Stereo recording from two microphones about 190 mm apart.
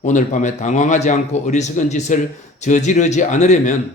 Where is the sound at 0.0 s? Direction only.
40° left (ahead or behind).